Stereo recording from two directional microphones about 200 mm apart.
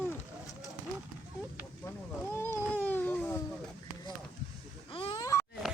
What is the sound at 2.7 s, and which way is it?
Baby cry, 10° left (ahead or behind).